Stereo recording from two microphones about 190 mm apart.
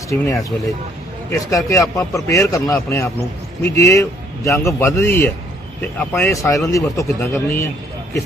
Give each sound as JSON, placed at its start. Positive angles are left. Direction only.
{"t": 0.1, "sound": "speech", "side_deg": 10}